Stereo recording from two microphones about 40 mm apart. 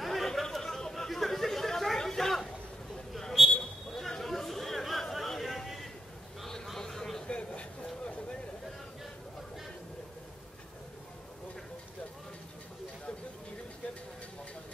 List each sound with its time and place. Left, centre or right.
0.0 s chatter: centre
2.0 s a sound: centre
7.2 s vehicle: left